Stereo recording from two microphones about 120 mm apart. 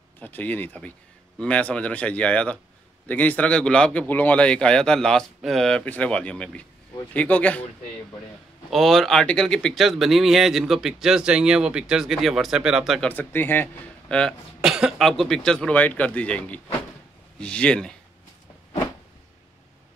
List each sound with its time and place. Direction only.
0.2 s a man's voice: 15° left (ahead or behind)
8.6 s speech: centre (ahead or behind)
13.1 s a man's voice: 15° left (ahead or behind)
14.6 s a man's voice: 5° right (ahead or behind)